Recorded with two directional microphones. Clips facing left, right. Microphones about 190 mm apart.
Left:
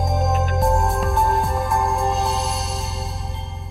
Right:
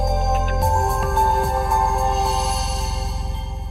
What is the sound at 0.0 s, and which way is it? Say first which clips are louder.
Music: even; centre (ahead or behind).